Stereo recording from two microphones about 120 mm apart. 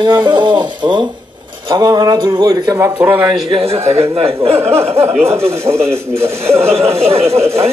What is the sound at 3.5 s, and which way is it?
A man's voice, 55° right (ahead or behind).